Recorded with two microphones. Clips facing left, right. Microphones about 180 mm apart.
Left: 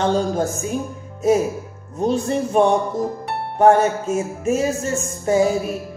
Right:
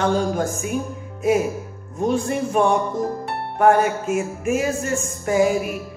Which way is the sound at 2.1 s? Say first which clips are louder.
Left 2 dB; 25° left (ahead or behind).